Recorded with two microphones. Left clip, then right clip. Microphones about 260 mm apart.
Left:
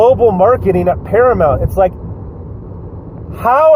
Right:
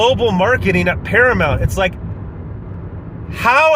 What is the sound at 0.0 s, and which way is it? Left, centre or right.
Speech, right.